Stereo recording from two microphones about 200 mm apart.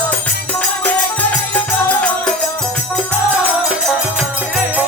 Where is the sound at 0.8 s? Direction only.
5° left (ahead or behind).